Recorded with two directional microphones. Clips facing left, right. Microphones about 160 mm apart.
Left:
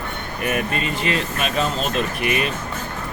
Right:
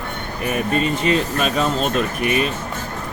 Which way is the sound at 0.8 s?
40° right (ahead or behind).